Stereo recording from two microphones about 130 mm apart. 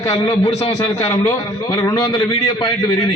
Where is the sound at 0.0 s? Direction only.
30° left (ahead or behind).